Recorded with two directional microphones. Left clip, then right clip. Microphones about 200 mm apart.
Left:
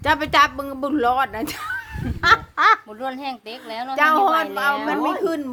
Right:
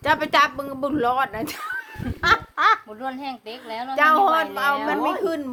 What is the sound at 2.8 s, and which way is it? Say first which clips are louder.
A child's voice: left 2 dB; 50° left (ahead or behind).